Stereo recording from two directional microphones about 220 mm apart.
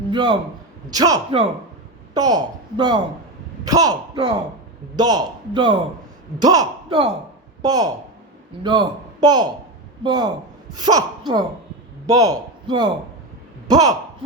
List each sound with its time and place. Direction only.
0.1 s a man's voice: 20° right (ahead or behind)
12.0 s a man's voice: 15° right (ahead or behind)